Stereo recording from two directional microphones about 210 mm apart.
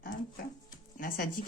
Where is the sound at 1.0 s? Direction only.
40° left (ahead or behind).